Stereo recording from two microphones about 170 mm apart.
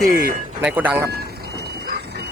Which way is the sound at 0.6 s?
10° right (ahead or behind).